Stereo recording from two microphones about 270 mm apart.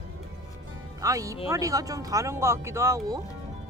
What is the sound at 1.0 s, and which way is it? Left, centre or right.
Speech, centre.